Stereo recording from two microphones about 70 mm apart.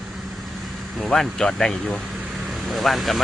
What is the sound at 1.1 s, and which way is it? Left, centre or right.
Speech, centre.